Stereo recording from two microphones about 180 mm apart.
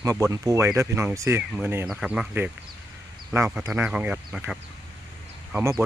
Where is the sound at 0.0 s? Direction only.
15° right (ahead or behind).